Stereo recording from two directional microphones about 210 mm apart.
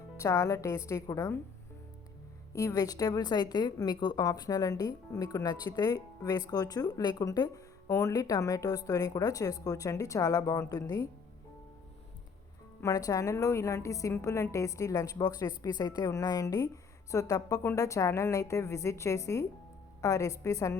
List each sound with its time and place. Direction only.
0.2 s a woman's voice: 15° left (ahead or behind)
2.5 s a woman's voice: 15° left (ahead or behind)
12.8 s a woman's voice: 15° left (ahead or behind)